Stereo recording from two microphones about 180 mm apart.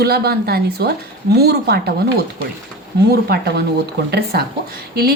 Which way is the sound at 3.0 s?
65° right (ahead or behind).